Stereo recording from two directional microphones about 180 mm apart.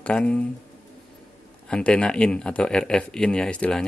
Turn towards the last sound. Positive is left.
turn(degrees=5)  # may be behind; listen again after turning